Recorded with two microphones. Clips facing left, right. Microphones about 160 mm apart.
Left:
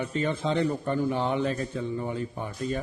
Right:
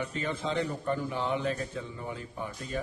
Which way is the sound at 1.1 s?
60° left (ahead or behind).